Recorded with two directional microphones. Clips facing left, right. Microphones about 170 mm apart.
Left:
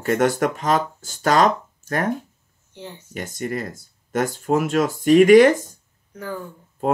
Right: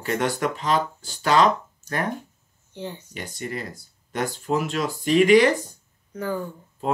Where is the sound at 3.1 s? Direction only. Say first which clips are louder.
Left 10 dB; 45° left (ahead or behind).